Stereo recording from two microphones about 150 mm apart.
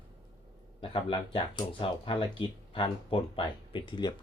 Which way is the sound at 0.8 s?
35° left (ahead or behind).